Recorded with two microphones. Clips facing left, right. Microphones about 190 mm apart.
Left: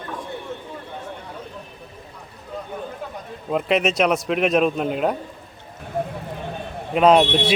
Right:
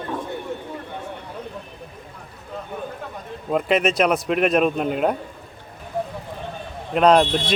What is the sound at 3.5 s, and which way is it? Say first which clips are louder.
Speech: right 1 dB; centre (ahead or behind).